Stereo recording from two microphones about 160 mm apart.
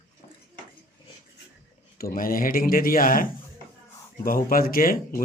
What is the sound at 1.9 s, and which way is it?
Speech, 65° left (ahead or behind).